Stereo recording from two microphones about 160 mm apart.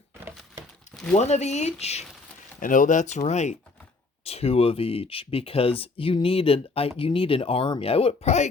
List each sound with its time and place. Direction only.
1.1 s speech: 45° left (ahead or behind)
2.6 s speech: 55° left (ahead or behind)